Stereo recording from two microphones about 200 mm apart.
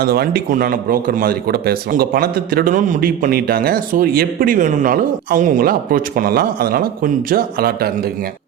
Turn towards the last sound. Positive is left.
turn(degrees=-50)  # may be behind; listen again after turning